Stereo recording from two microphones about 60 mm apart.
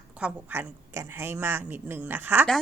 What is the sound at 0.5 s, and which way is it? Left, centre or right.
A woman's voice, right.